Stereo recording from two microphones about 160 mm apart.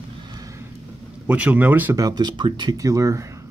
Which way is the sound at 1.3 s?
10° right (ahead or behind).